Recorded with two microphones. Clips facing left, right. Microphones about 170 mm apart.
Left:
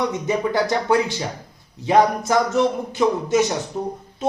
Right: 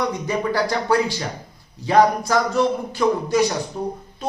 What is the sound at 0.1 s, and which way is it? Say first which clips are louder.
Speech: left 1 dB; 20° left (ahead or behind).